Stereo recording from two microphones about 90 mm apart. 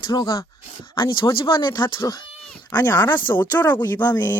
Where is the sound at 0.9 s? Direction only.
60° left (ahead or behind).